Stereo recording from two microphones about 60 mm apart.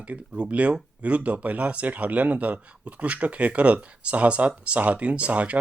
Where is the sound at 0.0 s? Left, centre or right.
Centre.